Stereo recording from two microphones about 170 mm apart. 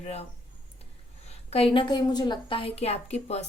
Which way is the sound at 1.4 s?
35° left (ahead or behind).